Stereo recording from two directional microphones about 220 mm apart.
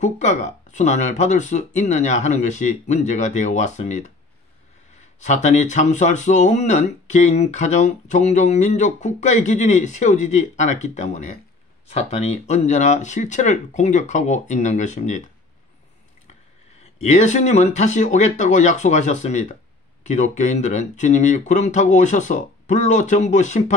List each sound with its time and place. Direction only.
0.0 s speech: 35° left (ahead or behind)
5.2 s speech: 35° left (ahead or behind)
17.0 s speech: 30° left (ahead or behind)